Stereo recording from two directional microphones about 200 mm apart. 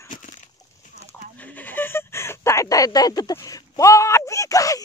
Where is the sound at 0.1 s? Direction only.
40° left (ahead or behind).